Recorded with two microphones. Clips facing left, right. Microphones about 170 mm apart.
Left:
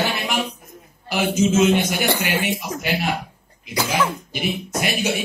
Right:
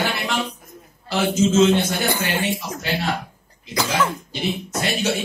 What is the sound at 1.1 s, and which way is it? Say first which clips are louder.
A man's voice: even; 15° left (ahead or behind).